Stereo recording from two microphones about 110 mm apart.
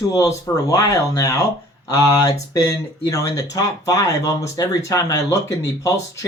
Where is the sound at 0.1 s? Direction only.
30° left (ahead or behind).